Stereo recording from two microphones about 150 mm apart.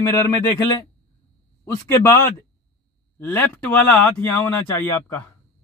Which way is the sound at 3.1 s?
15° left (ahead or behind).